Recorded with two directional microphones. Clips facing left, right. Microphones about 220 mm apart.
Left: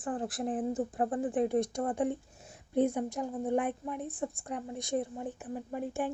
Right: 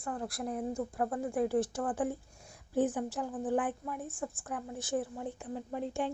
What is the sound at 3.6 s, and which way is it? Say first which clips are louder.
Speech: left 2 dB; 20° left (ahead or behind).